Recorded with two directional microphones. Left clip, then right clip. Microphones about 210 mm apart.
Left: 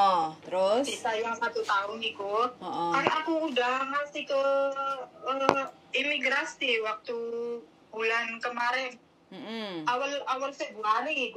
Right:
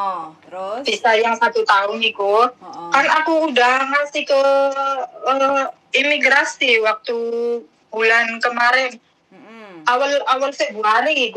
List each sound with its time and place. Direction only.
0.0 s speech: 15° left (ahead or behind)
0.8 s speech: 60° right (ahead or behind)